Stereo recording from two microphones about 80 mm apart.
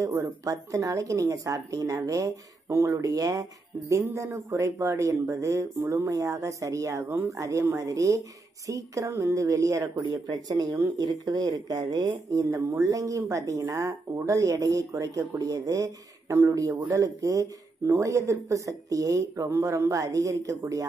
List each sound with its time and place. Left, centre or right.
0.0 s speech: right
3.1 s speech: right
12.4 s speech: right